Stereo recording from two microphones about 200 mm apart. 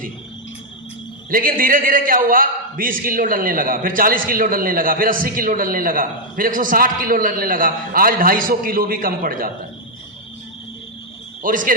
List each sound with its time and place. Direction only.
1.3 s a man's voice: 45° right (ahead or behind)
11.4 s a man's voice: 40° right (ahead or behind)